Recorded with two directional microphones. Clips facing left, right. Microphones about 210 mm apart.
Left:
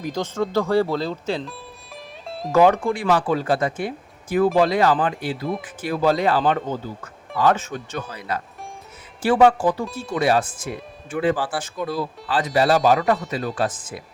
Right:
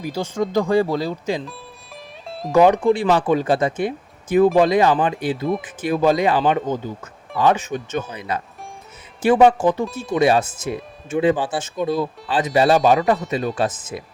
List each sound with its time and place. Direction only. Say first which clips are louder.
0.0 s speech: right 1 dB; 10° right (ahead or behind)
2.5 s speech: right 3 dB; 15° right (ahead or behind)